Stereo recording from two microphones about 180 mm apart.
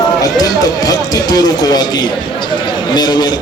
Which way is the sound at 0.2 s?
20° left (ahead or behind).